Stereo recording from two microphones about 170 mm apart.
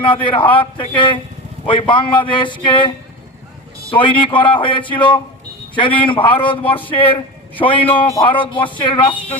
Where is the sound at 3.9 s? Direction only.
30° left (ahead or behind).